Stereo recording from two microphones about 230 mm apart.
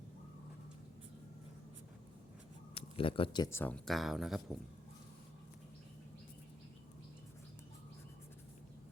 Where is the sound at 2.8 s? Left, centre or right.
Left; by 4.5 s centre.